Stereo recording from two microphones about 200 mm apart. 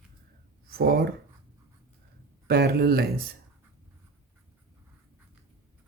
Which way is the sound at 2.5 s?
50° right (ahead or behind).